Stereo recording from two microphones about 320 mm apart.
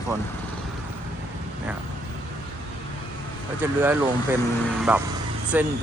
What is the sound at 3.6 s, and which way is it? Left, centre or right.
Speech, centre.